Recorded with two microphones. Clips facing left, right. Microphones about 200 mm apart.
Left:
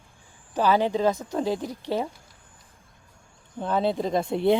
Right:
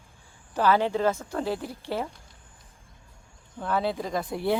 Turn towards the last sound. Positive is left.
turn(degrees=25)  # may be behind; listen again after turning